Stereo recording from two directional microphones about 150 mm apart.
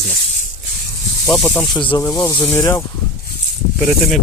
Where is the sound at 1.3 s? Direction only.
5° left (ahead or behind); by 2.8 s 20° left (ahead or behind).